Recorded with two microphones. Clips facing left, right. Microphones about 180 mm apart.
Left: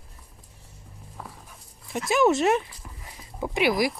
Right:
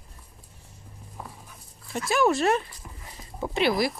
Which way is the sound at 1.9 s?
20° left (ahead or behind).